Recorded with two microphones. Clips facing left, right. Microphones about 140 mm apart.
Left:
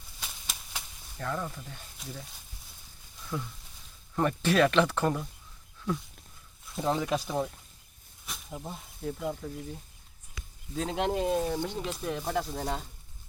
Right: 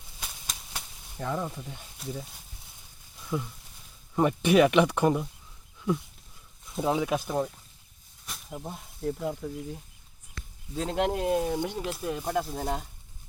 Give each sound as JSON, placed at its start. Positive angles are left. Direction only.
{"t": 0.2, "sound": "a sound", "side_deg": 5}
{"t": 1.1, "sound": "speech", "side_deg": -15}
{"t": 3.2, "sound": "speech", "side_deg": -10}
{"t": 6.7, "sound": "speech", "side_deg": -5}
{"t": 8.3, "sound": "snake", "side_deg": 0}
{"t": 8.7, "sound": "speech", "side_deg": -5}